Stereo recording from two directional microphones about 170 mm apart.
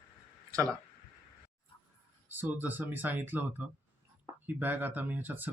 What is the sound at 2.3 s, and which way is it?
Speech, 10° right (ahead or behind).